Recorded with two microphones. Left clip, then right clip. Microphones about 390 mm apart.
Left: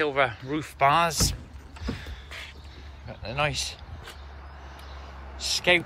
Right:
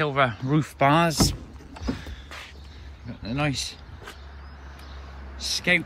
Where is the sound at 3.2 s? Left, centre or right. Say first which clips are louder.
Left 1 dB; centre.